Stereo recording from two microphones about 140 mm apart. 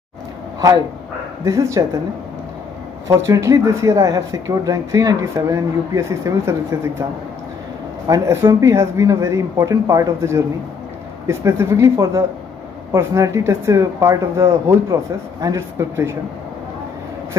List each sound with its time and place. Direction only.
1.4 s speech: 20° right (ahead or behind)
3.1 s speech: 25° right (ahead or behind)
8.1 s speech: 20° right (ahead or behind)